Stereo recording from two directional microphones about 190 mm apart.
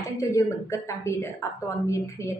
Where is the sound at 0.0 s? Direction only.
15° left (ahead or behind).